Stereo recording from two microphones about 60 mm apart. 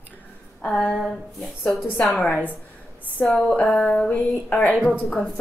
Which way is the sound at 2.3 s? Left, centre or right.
Left.